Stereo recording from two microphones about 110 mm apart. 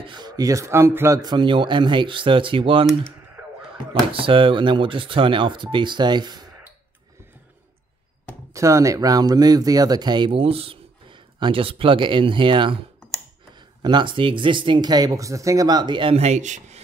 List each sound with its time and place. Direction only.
0.0 s speech: 40° right (ahead or behind)
4.1 s speech: 55° right (ahead or behind)
8.5 s speech: 30° right (ahead or behind); by 16.2 s 45° right (ahead or behind)
16.2 s speech: 85° right